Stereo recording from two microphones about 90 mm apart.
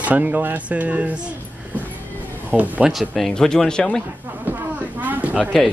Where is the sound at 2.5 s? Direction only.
15° right (ahead or behind).